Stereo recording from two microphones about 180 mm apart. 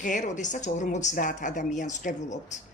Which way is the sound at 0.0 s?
45° left (ahead or behind).